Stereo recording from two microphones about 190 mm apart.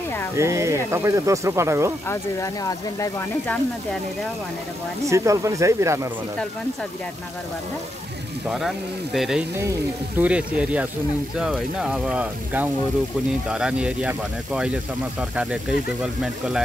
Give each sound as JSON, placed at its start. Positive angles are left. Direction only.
{"t": 0.4, "sound": "speech", "side_deg": -15}
{"t": 2.0, "sound": "speech", "side_deg": 15}
{"t": 5.0, "sound": "speech", "side_deg": -15}
{"t": 8.5, "sound": "speech", "side_deg": 0}
{"t": 9.6, "sound": "speech", "side_deg": -15}